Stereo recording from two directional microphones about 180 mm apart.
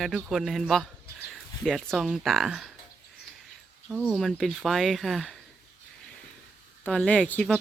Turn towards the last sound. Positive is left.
turn(degrees=5)  # may be behind; listen again after turning